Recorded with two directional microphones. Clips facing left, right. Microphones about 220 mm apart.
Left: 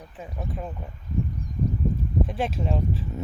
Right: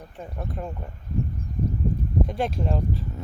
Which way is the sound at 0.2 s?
Centre (ahead or behind).